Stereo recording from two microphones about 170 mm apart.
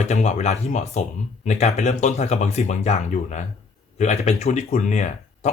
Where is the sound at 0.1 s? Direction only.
40° left (ahead or behind).